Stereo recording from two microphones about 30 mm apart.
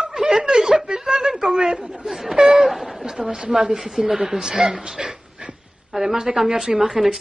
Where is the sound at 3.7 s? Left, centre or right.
Centre.